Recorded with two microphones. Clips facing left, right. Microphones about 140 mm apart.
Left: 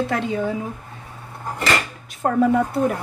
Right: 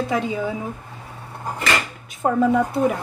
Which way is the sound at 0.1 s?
5° right (ahead or behind).